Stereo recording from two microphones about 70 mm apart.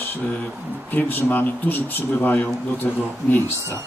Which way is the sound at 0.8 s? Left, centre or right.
Left.